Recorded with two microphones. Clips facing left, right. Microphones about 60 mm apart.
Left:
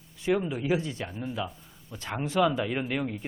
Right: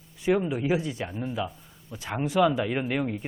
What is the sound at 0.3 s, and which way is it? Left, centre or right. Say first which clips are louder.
Speech: right 2 dB; centre.